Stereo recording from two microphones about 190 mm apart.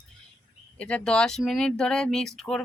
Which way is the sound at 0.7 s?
5° left (ahead or behind).